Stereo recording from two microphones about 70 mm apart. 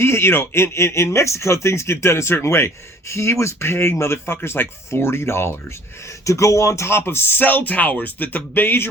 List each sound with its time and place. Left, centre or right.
0.0 s speech: left